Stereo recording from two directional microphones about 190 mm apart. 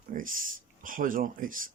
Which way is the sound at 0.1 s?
45° right (ahead or behind).